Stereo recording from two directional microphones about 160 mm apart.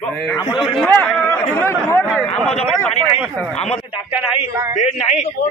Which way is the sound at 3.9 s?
5° right (ahead or behind).